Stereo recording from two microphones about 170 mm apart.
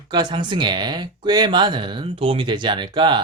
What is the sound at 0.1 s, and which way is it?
Speech, 25° right (ahead or behind).